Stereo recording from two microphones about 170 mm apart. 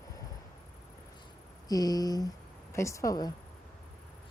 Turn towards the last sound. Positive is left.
turn(degrees=20)  # may be behind; listen again after turning